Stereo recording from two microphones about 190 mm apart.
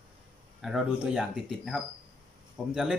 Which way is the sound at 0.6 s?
5° right (ahead or behind).